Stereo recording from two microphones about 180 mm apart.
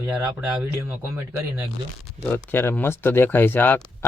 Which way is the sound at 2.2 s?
10° left (ahead or behind).